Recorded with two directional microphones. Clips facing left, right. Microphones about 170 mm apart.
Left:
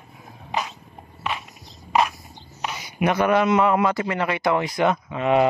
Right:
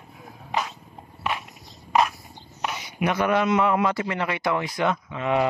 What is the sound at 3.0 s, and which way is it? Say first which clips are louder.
Speech: left 3 dB; 40° left (ahead or behind).